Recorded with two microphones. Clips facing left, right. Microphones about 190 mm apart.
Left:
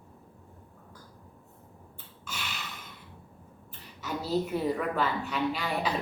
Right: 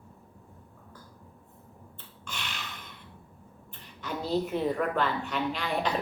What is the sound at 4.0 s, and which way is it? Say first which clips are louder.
A woman's voice: even; 5° left (ahead or behind).